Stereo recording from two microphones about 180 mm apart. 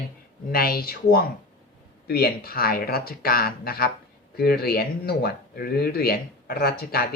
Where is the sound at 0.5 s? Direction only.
55° left (ahead or behind).